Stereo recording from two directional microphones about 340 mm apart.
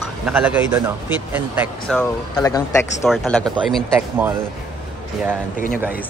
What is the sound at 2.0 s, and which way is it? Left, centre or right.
Speech, centre.